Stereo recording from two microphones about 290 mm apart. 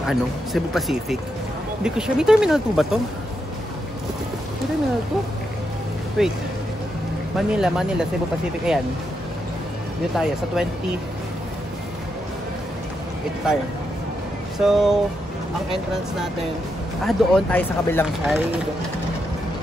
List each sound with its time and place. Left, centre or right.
0.0 s speech: centre
6.2 s speech: centre
7.3 s speech: centre
10.1 s speech: centre
13.4 s speech: centre